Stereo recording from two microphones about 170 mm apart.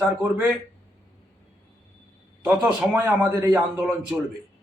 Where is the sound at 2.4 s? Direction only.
5° right (ahead or behind).